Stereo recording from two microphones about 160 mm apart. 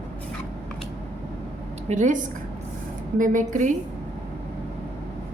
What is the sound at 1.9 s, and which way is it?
A woman's voice, 50° right (ahead or behind).